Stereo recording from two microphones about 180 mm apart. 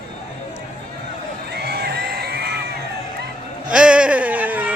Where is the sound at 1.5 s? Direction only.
60° right (ahead or behind).